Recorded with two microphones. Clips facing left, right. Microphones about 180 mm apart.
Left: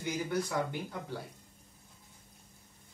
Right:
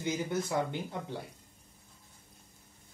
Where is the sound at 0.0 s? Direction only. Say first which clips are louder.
Right 1 dB; 20° right (ahead or behind).